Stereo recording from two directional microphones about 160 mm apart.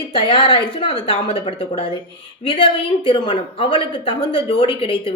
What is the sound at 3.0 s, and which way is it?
A woman's voice, 30° left (ahead or behind).